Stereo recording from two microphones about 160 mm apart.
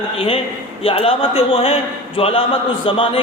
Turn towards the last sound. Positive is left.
turn(degrees=35)  # may be behind; listen again after turning